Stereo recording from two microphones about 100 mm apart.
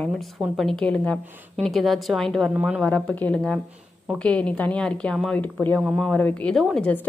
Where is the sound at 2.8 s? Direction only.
10° left (ahead or behind).